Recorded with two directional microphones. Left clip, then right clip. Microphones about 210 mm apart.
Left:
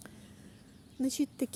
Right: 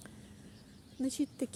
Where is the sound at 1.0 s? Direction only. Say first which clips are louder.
Left 3 dB; 30° left (ahead or behind).